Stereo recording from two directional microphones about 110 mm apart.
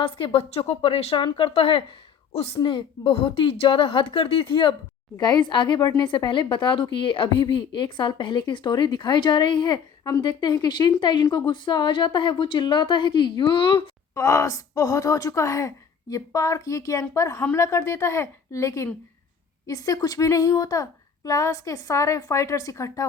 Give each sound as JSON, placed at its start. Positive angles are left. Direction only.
{"t": 0.0, "sound": "speech", "side_deg": 55}
{"t": 2.6, "sound": "a woman's voice", "side_deg": 50}
{"t": 10.0, "sound": "a woman's voice", "side_deg": 30}
{"t": 10.2, "sound": "a woman's voice", "side_deg": 40}
{"t": 14.2, "sound": "a woman's voice", "side_deg": 30}